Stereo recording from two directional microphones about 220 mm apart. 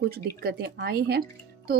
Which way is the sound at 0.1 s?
45° right (ahead or behind).